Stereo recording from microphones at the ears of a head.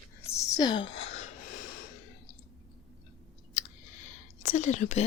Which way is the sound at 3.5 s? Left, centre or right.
Left.